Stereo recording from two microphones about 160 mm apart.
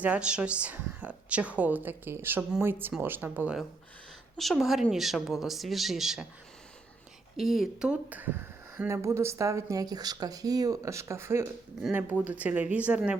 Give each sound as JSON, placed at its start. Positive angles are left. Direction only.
{"t": 0.0, "sound": "speech", "side_deg": -10}
{"t": 7.3, "sound": "speech", "side_deg": 0}